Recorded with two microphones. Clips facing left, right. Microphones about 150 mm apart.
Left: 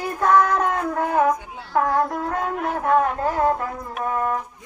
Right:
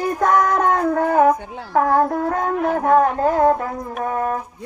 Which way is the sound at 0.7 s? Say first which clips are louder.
Right 5 dB; 40° right (ahead or behind).